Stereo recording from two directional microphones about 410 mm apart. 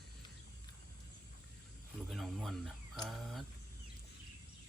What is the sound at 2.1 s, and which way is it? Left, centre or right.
Speech, centre.